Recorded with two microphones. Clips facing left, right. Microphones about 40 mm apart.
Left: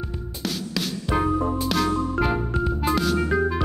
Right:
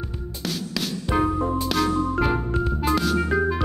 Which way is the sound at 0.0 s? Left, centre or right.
Centre.